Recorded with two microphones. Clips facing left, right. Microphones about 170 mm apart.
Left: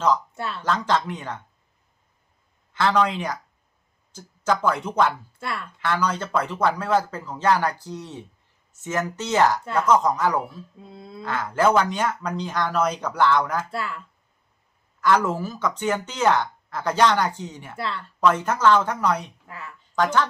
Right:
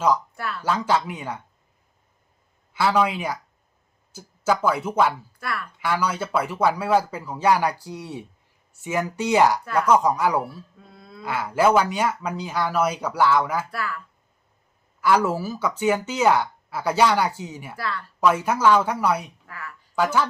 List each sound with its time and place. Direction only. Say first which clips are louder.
0.3 s speech: even; 25° left (ahead or behind)
0.6 s speech: right 1 dB; 10° right (ahead or behind)
2.7 s speech: even; 10° right (ahead or behind)
5.4 s speech: even; 25° left (ahead or behind)
5.8 s speech: even; 10° right (ahead or behind)
10.8 s speech: left 5 dB; 20° left (ahead or behind)
11.2 s speech: right 1 dB; 10° right (ahead or behind)
13.7 s speech: even; 25° left (ahead or behind)
15.0 s speech: right 1 dB; 10° right (ahead or behind)
17.7 s speech: even; 25° left (ahead or behind)
18.2 s speech: even; 10° right (ahead or behind)
19.5 s a sound: even; 20° left (ahead or behind)
20.0 s speech: even; 10° right (ahead or behind)